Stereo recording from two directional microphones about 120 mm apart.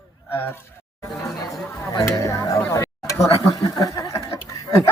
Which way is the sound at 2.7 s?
25° left (ahead or behind).